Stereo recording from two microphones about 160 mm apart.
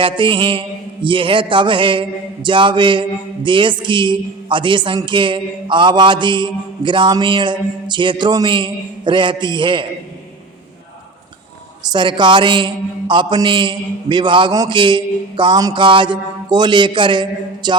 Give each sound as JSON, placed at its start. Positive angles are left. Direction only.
{"t": 0.0, "sound": "mantra", "side_deg": -30}
{"t": 11.9, "sound": "a man's voice", "side_deg": -30}